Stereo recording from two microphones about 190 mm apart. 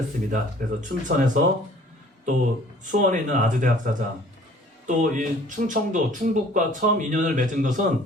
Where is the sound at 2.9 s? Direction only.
45° right (ahead or behind).